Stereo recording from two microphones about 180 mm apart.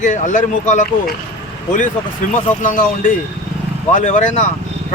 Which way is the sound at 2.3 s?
45° left (ahead or behind).